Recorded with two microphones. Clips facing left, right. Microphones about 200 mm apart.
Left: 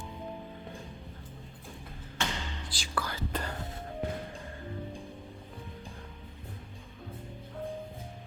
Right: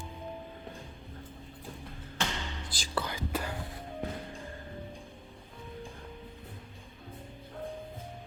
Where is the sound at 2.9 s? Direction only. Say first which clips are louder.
Right 1 dB; 20° right (ahead or behind).